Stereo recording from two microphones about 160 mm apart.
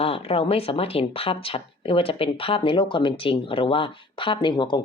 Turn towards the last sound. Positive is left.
turn(degrees=30)  # may be behind; listen again after turning